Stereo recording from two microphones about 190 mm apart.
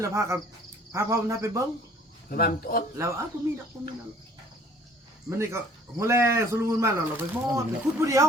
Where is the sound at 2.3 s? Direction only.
50° left (ahead or behind).